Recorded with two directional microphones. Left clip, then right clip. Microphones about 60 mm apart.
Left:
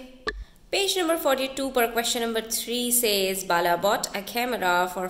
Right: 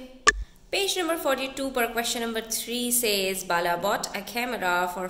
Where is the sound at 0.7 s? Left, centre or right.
Centre.